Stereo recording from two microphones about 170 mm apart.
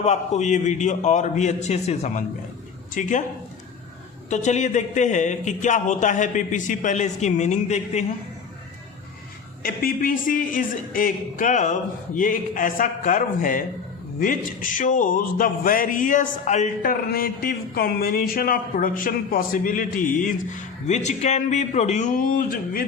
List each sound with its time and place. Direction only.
0.0 s a man's voice: 40° left (ahead or behind)
4.3 s a man's voice: 45° left (ahead or behind)
9.6 s a man's voice: 55° left (ahead or behind)
17.1 s a man's voice: 60° left (ahead or behind)